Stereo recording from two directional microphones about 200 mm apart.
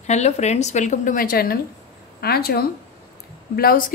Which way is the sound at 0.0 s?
35° left (ahead or behind).